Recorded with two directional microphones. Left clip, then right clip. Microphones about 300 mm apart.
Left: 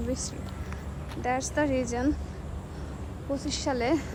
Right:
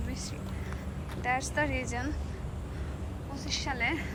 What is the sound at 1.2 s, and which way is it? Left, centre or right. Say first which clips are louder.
Speech: left 3 dB; centre.